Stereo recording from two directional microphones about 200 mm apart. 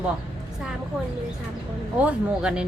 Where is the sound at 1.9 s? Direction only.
5° right (ahead or behind).